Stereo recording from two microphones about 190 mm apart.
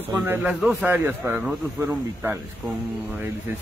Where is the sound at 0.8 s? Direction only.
10° right (ahead or behind).